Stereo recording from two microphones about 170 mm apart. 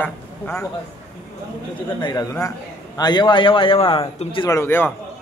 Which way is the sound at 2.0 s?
20° left (ahead or behind).